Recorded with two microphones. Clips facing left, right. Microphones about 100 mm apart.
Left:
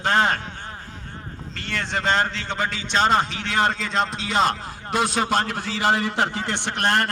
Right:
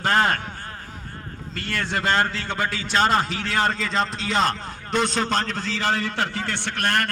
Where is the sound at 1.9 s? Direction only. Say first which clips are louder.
Even; 5° right (ahead or behind).